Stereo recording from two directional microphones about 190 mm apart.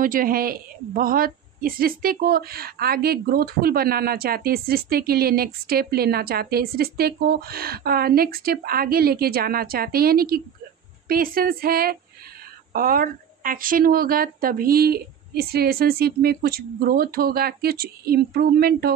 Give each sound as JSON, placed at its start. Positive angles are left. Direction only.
{"t": 0.0, "sound": "a woman's voice", "side_deg": -45}